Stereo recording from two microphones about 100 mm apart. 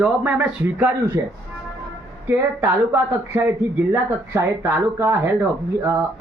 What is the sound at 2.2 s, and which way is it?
Speech, 20° right (ahead or behind).